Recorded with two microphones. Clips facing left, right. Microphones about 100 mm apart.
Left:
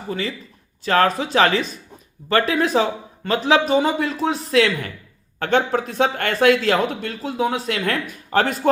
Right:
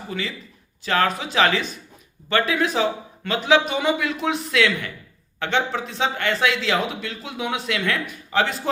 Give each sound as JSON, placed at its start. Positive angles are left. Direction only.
{"t": 0.1, "sound": "speech", "side_deg": 40}